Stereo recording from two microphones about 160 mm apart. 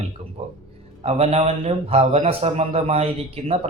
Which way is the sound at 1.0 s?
40° right (ahead or behind).